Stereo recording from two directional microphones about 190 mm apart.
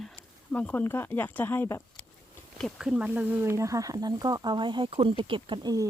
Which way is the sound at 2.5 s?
Centre (ahead or behind).